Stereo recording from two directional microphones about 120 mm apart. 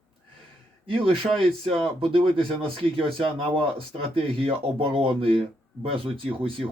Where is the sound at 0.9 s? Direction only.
50° right (ahead or behind).